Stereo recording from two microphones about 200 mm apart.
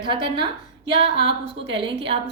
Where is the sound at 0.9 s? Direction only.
60° right (ahead or behind).